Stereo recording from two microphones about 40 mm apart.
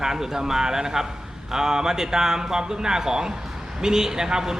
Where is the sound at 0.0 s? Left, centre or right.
Centre.